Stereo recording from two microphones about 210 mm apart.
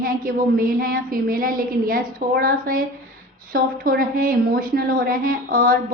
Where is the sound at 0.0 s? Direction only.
45° right (ahead or behind).